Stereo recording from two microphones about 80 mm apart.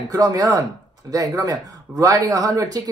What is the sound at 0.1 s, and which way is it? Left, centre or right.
Speech, right.